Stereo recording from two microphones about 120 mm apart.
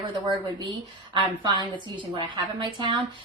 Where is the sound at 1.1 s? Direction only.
40° right (ahead or behind).